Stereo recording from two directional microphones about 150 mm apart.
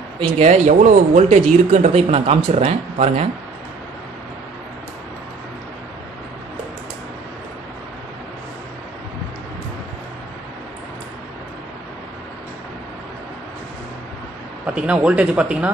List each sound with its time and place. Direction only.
0.2 s speech: 50° right (ahead or behind)
14.7 s speech: 10° right (ahead or behind)